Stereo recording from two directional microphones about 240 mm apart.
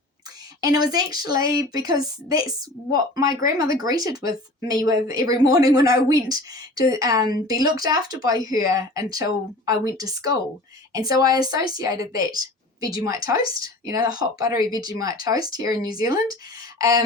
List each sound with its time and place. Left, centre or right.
0.6 s a woman's voice: centre